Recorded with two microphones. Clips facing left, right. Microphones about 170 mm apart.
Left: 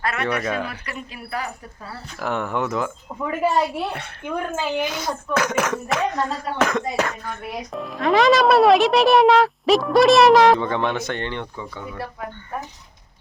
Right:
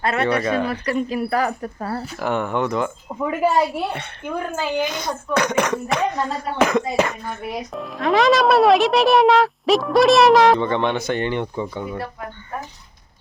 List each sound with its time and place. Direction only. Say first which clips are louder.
0.0 s speech: right 4 dB; 30° right (ahead or behind)
0.4 s speech: right 4 dB; 5° left (ahead or behind)
0.7 s speech: right 12 dB; 40° right (ahead or behind)
2.1 s speech: right 1 dB; centre (ahead or behind)
11.5 s speech: right 6 dB; 20° right (ahead or behind)